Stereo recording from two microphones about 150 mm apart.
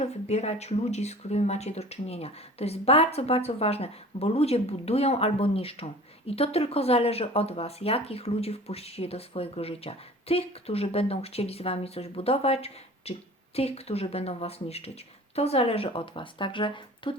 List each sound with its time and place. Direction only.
0.0 s speech: 45° left (ahead or behind)